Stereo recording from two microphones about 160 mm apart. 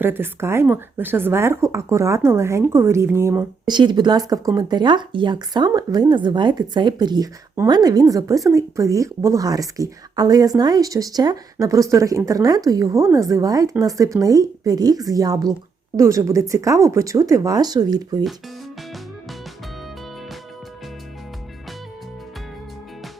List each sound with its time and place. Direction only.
0.0 s speech: 15° right (ahead or behind)
3.7 s a woman's voice: 30° right (ahead or behind)